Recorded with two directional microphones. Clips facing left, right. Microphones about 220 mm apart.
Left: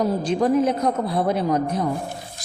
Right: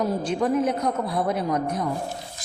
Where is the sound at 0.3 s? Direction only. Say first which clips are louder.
Left 4 dB; 35° left (ahead or behind).